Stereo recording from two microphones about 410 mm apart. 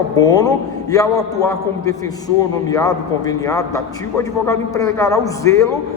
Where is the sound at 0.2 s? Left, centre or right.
Centre.